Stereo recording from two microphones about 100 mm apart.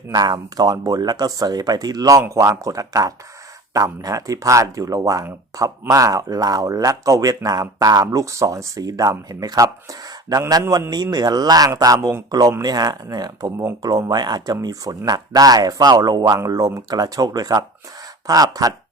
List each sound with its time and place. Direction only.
0.1 s speech: 40° right (ahead or behind)